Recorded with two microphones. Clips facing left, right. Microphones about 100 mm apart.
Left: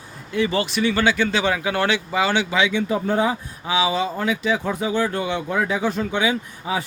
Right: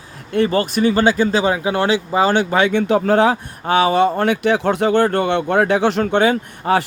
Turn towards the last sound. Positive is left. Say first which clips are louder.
# right 8 dB
turn(degrees=-60)  # may be behind; listen again after turning